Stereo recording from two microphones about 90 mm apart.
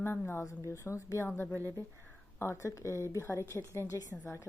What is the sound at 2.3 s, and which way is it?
A woman's voice, 30° left (ahead or behind).